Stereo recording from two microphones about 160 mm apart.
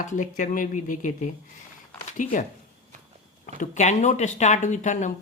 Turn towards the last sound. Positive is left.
turn(degrees=50)  # may be behind; listen again after turning